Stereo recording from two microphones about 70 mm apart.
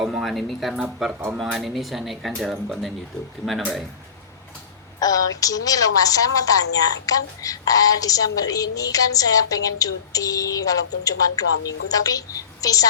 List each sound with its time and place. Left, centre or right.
0.0 s speech: centre
4.9 s a woman's voice: left